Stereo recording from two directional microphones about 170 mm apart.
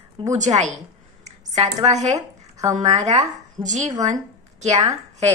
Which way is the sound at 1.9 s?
40° right (ahead or behind).